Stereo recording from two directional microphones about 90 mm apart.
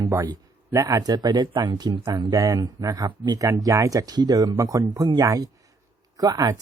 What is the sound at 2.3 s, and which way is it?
Speech, 40° right (ahead or behind).